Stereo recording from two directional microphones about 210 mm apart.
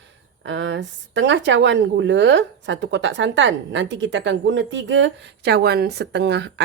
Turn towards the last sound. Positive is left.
turn(degrees=-55)  # may be behind; listen again after turning